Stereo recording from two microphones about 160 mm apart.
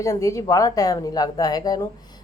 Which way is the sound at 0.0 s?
20° left (ahead or behind).